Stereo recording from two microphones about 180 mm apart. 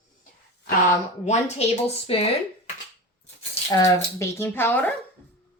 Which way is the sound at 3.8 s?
15° left (ahead or behind).